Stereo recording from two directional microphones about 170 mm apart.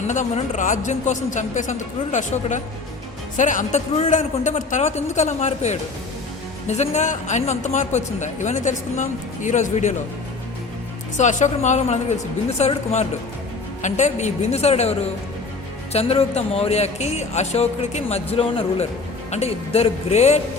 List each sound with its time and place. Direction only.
0.1 s a man's voice: 45° left (ahead or behind)
11.2 s a man's voice: 45° left (ahead or behind)